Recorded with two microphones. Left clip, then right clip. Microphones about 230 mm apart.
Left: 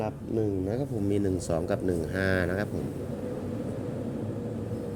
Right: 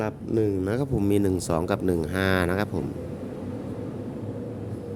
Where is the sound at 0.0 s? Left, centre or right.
Right; by 2.6 s centre.